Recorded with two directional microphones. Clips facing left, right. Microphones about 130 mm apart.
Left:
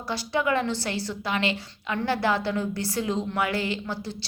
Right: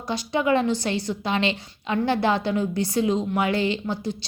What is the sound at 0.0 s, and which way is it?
A woman's voice, 20° right (ahead or behind).